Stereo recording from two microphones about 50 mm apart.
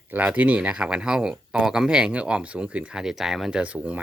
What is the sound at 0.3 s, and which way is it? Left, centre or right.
Speech, right.